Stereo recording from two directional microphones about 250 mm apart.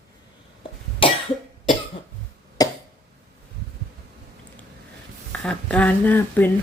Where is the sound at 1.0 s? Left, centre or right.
Left.